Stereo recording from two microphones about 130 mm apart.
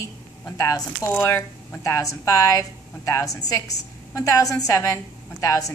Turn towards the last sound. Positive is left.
turn(degrees=25)  # may be behind; listen again after turning